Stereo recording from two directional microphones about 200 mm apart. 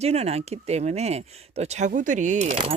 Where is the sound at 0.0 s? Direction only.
30° right (ahead or behind).